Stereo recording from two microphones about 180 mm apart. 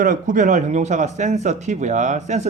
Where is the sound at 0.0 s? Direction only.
45° right (ahead or behind).